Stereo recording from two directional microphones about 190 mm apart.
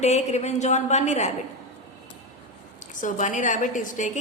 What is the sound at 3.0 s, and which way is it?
A woman's voice, 40° left (ahead or behind).